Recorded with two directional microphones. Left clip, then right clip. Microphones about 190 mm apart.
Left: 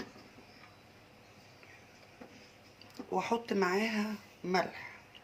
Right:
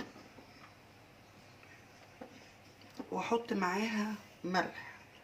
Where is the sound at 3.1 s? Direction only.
40° left (ahead or behind).